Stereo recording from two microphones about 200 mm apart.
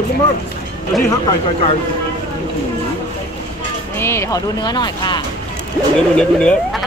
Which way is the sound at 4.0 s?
15° left (ahead or behind).